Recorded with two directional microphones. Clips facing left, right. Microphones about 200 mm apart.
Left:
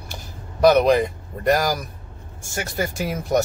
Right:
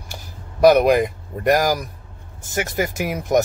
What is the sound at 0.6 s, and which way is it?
Speech, 10° right (ahead or behind).